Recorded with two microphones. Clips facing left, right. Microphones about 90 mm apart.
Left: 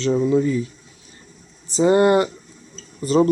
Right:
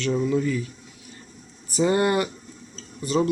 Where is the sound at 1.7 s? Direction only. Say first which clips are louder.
Left 6 dB; 30° left (ahead or behind).